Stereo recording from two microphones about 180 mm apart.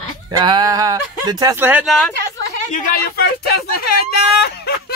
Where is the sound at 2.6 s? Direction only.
45° left (ahead or behind).